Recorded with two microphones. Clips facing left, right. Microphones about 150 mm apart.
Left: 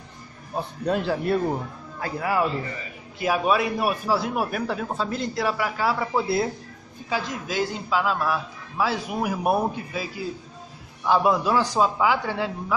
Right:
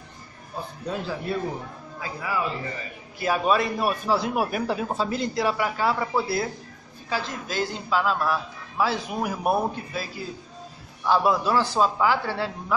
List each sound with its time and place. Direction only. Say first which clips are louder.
0.6 s a man's voice: left 6 dB; 70° left (ahead or behind)
3.2 s a man's voice: even; 10° left (ahead or behind)
6.1 s a man's voice: left 2 dB; 20° left (ahead or behind)